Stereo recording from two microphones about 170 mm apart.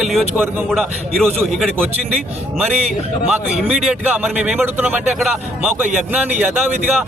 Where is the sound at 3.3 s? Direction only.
5° right (ahead or behind).